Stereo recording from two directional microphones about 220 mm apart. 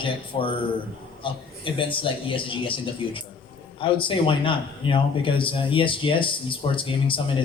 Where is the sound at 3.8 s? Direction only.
25° left (ahead or behind).